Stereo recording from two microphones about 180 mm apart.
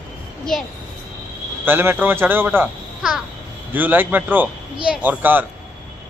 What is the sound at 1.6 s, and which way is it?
Speech, 10° right (ahead or behind).